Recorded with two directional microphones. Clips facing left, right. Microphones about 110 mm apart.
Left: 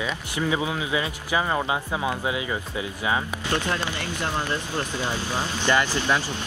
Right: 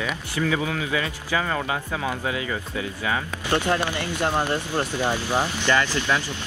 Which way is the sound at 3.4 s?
15° right (ahead or behind).